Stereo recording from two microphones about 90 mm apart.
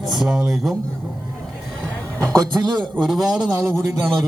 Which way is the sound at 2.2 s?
50° right (ahead or behind).